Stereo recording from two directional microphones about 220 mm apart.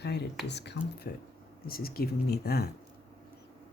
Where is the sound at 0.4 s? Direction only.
50° left (ahead or behind).